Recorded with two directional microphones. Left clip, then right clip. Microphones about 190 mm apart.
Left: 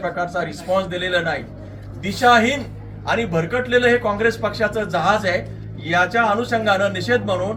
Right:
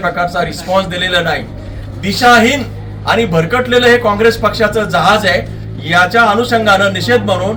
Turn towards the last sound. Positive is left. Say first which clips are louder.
# right 7 dB
turn(degrees=-5)  # may be behind; listen again after turning